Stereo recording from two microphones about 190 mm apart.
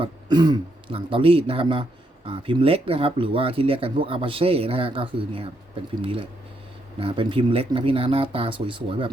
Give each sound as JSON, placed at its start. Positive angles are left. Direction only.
{"t": 0.0, "sound": "speech", "side_deg": -20}